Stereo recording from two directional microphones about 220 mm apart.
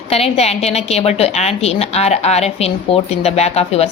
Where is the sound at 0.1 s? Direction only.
30° left (ahead or behind).